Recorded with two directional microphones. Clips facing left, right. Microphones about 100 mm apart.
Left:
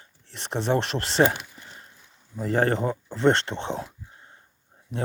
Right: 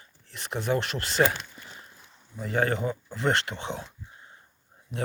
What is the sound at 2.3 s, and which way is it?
Speech, 45° left (ahead or behind).